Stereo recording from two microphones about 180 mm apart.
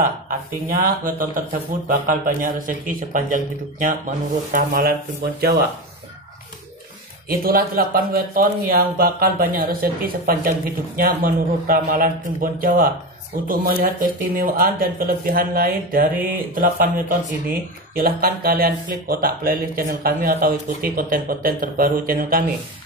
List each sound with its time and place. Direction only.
0.0 s speech: 50° right (ahead or behind)
4.5 s speech: 50° right (ahead or behind)
7.2 s speech: 55° right (ahead or behind)